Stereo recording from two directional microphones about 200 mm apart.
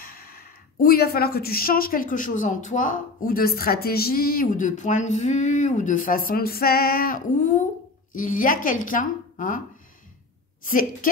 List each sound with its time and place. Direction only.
0.0 s a woman's voice: 50° left (ahead or behind)
10.6 s speech: 45° left (ahead or behind)